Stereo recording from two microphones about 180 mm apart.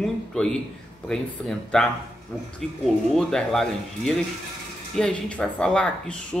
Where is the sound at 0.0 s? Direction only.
5° left (ahead or behind).